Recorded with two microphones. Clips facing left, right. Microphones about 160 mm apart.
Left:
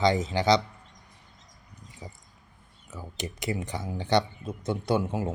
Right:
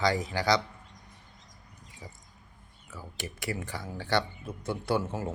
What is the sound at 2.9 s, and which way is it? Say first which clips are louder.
Speech: left 4 dB; 20° left (ahead or behind).